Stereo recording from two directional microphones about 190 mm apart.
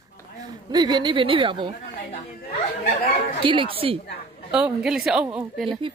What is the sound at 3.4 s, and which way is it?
Speech, 25° right (ahead or behind).